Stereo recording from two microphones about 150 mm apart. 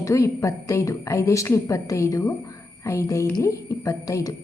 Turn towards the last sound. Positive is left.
turn(degrees=20)  # may be behind; listen again after turning